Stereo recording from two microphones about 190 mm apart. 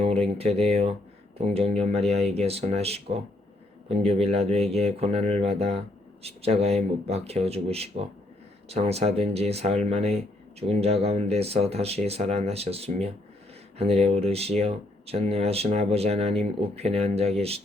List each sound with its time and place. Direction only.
0.0 s speech: 30° right (ahead or behind)